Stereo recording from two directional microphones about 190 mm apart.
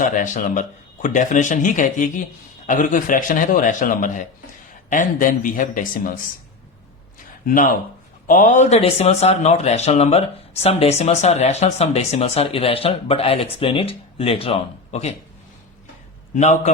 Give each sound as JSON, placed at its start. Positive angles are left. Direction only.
{"t": 0.0, "sound": "speech", "side_deg": 40}
{"t": 7.4, "sound": "speech", "side_deg": 45}
{"t": 16.3, "sound": "speech", "side_deg": 40}